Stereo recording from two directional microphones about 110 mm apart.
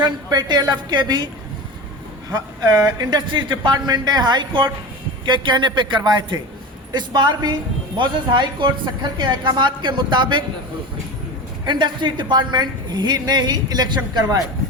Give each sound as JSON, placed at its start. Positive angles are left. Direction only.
{"t": 0.0, "sound": "a woman's voice", "side_deg": -40}
{"t": 2.3, "sound": "a woman's voice", "side_deg": -35}
{"t": 11.6, "sound": "a woman's voice", "side_deg": -45}